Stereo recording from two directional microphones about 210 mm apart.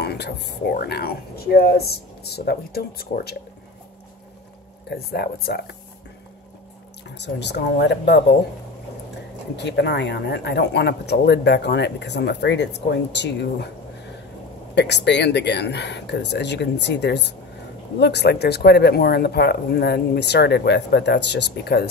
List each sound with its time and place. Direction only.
0.0 s speech: 50° left (ahead or behind)
4.8 s speech: 50° left (ahead or behind)
7.2 s speech: 55° left (ahead or behind)
9.6 s speech: 55° left (ahead or behind)
14.8 s speech: 55° left (ahead or behind)